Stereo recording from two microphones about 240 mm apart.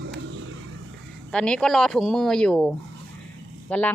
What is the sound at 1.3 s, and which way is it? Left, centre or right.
Speech, centre.